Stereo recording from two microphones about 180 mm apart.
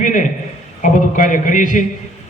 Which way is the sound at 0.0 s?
45° left (ahead or behind).